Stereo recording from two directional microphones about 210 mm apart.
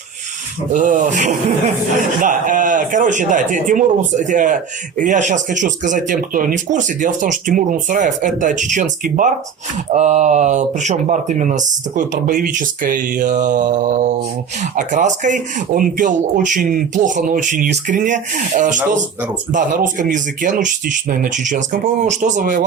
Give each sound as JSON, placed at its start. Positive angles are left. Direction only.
{"t": 0.7, "sound": "speech", "side_deg": -35}